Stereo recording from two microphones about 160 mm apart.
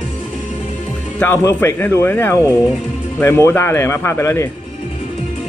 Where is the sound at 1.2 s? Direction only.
15° left (ahead or behind).